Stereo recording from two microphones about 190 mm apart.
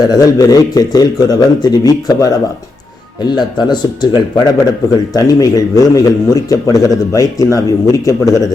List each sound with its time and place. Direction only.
0.0 s a man's voice: 20° left (ahead or behind)